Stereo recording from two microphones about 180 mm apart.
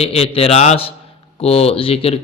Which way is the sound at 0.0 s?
35° left (ahead or behind).